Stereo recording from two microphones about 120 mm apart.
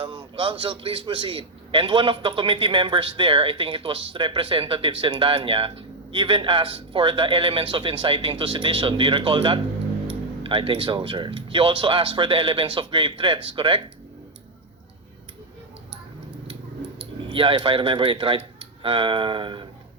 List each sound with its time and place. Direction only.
0.0 s a man's voice: 45° right (ahead or behind)
17.2 s a man's voice: 45° right (ahead or behind)